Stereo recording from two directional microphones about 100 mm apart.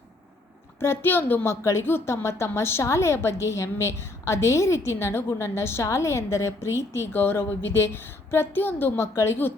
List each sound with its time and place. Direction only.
0.8 s a woman's voice: 20° left (ahead or behind)